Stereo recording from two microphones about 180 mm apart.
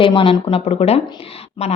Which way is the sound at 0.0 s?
30° left (ahead or behind).